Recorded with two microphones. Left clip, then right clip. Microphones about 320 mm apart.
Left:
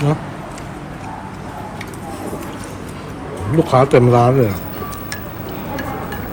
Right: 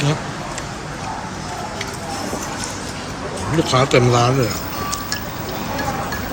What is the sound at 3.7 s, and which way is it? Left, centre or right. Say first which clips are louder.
Speech: left 3 dB; centre.